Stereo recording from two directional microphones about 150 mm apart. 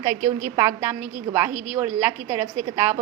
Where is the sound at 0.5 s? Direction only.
15° right (ahead or behind).